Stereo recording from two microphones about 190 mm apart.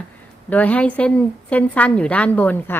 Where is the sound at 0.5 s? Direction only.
10° left (ahead or behind).